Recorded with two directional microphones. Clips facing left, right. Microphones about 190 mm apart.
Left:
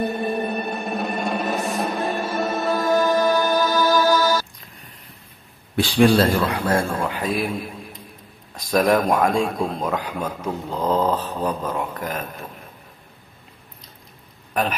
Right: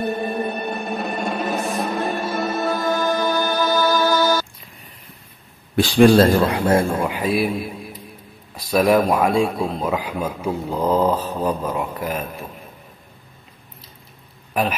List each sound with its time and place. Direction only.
0.5 s music: centre (ahead or behind)
5.8 s speech: 45° right (ahead or behind)
6.5 s speech: 20° right (ahead or behind)
14.5 s speech: 5° right (ahead or behind)